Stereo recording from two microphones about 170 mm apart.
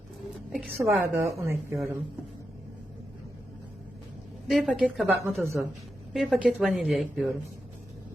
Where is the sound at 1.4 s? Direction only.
15° right (ahead or behind).